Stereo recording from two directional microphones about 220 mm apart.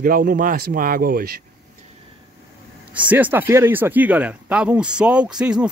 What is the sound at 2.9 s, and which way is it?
Speech, 5° right (ahead or behind).